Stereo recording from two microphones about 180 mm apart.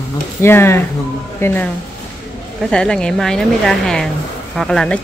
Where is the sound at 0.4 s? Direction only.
15° left (ahead or behind).